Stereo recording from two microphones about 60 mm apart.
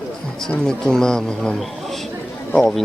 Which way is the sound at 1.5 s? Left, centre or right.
Centre.